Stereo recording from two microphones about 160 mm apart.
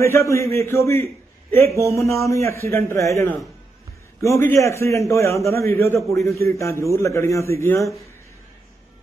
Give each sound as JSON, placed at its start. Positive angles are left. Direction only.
{"t": 0.0, "sound": "a man's voice", "side_deg": 15}
{"t": 2.0, "sound": "a man's voice", "side_deg": 20}